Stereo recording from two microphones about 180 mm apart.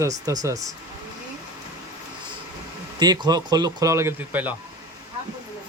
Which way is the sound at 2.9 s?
20° right (ahead or behind).